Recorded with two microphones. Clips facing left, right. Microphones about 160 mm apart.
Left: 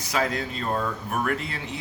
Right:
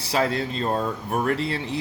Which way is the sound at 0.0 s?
30° right (ahead or behind).